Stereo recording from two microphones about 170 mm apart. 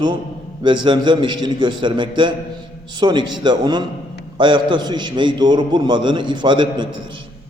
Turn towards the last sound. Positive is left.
turn(degrees=-25)  # may be behind; listen again after turning